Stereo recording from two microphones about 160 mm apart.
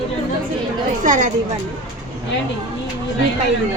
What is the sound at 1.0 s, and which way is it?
Speech, 50° right (ahead or behind).